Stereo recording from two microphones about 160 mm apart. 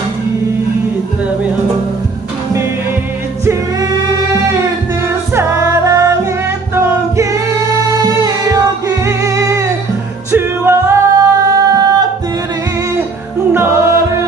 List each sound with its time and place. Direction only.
3.4 s music: 20° right (ahead or behind)
6.7 s singing: 20° right (ahead or behind)
9.0 s music: 20° right (ahead or behind)
13.5 s music: 15° right (ahead or behind)